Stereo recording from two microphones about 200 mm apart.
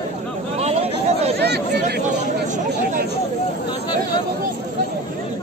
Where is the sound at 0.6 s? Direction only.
30° right (ahead or behind).